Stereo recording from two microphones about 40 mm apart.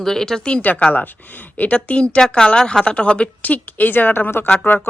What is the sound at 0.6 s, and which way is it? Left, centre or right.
A woman's voice, left.